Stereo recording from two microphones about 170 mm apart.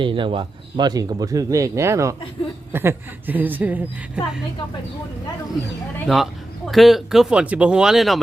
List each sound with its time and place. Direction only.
0.0 s a woman's voice: 30° right (ahead or behind); by 4.2 s 10° right (ahead or behind)
6.1 s speech: 5° right (ahead or behind)